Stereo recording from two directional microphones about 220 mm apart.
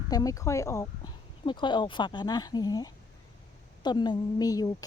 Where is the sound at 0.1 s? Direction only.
15° left (ahead or behind).